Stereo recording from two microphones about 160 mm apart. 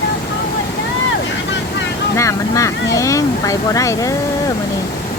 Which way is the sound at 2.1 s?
20° left (ahead or behind).